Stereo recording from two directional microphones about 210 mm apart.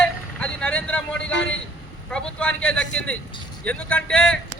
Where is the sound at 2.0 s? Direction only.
5° left (ahead or behind).